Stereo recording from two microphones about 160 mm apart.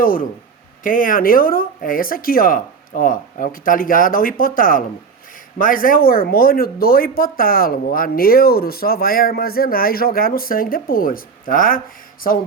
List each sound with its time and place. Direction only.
0.0 s speech: 60° left (ahead or behind)